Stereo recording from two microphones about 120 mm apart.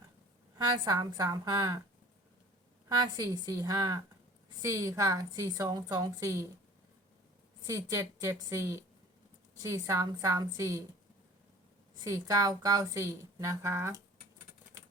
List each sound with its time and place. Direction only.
0.6 s a woman's voice: 30° right (ahead or behind)
2.9 s a woman's voice: 30° right (ahead or behind)
7.7 s a woman's voice: 25° right (ahead or behind)
11.9 s a woman's voice: 30° right (ahead or behind)